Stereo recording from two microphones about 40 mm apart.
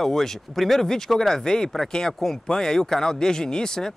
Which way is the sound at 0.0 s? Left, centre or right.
Centre.